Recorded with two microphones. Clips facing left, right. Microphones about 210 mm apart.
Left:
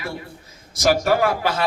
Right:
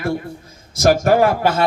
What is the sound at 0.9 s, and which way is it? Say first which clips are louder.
Speech: right 4 dB; 50° right (ahead or behind).